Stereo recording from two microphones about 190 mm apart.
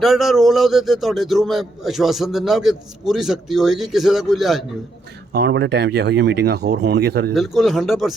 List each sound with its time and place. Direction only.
0.0 s a man's voice: centre (ahead or behind)
5.3 s speech: 65° right (ahead or behind)
7.3 s a man's voice: centre (ahead or behind)